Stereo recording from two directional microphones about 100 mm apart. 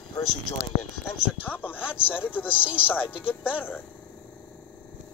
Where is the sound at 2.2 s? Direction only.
15° left (ahead or behind).